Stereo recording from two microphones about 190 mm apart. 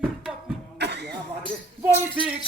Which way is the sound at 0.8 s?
60° right (ahead or behind).